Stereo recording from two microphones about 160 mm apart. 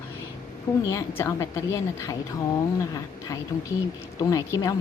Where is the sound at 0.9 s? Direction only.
20° left (ahead or behind).